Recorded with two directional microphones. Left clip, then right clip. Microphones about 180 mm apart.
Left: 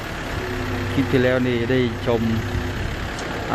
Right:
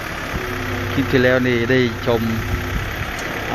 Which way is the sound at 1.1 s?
Centre (ahead or behind).